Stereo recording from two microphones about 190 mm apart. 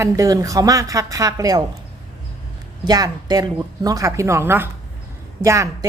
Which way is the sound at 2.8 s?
20° right (ahead or behind).